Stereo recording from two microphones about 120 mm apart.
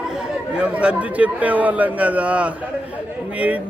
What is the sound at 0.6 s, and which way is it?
Speech, 10° right (ahead or behind).